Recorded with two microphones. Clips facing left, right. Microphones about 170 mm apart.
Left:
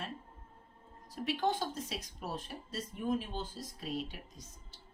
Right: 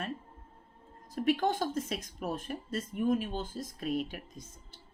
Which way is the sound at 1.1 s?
50° right (ahead or behind).